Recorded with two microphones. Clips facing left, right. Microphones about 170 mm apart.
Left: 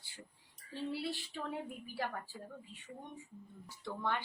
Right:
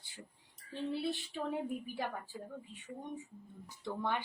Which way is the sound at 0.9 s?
20° right (ahead or behind).